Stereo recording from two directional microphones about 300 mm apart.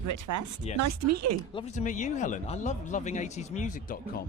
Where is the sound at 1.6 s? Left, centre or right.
Left.